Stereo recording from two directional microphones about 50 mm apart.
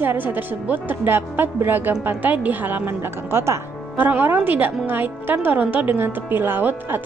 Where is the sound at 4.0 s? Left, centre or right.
Right.